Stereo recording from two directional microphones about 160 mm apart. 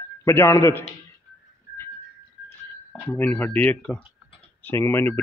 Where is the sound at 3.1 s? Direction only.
10° left (ahead or behind).